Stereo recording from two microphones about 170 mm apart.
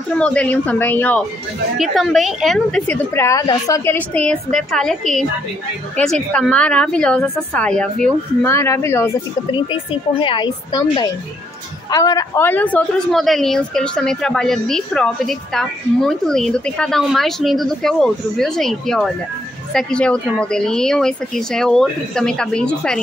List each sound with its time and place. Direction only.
0.2 s a woman's voice: 5° left (ahead or behind)
3.2 s a woman's voice: 20° left (ahead or behind)
9.5 s a woman's voice: 30° left (ahead or behind); by 22.9 s 5° left (ahead or behind)